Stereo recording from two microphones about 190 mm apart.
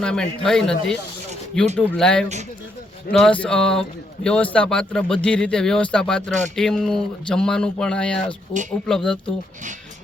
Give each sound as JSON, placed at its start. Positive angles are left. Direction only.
{"t": 0.0, "sound": "speech", "side_deg": 5}